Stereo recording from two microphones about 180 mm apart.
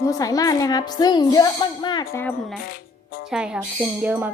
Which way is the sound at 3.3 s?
5° right (ahead or behind).